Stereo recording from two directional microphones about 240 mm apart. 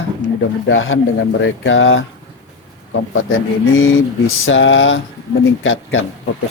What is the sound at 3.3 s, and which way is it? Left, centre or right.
Speech, left.